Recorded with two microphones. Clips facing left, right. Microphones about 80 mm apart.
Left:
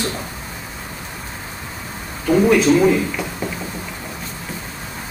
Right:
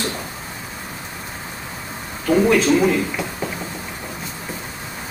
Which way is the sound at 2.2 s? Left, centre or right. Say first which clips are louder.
Left 2 dB; centre.